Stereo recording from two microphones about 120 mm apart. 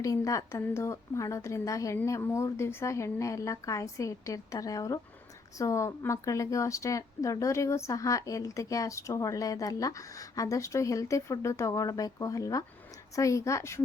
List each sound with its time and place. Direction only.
0.0 s a woman's voice: 30° left (ahead or behind)